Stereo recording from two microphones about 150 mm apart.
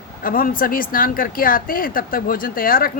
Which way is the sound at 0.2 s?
70° left (ahead or behind).